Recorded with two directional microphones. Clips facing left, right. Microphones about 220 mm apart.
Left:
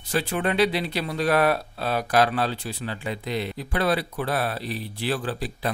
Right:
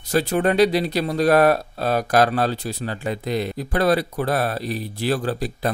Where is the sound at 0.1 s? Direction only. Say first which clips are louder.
Right 6 dB; 40° right (ahead or behind).